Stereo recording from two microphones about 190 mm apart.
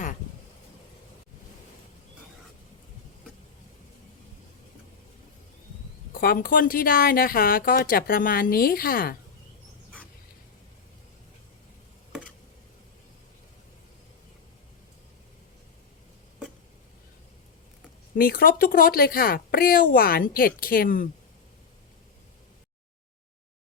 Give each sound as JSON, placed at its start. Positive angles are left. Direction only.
{"t": 6.1, "sound": "speech", "side_deg": 50}
{"t": 18.2, "sound": "speech", "side_deg": 50}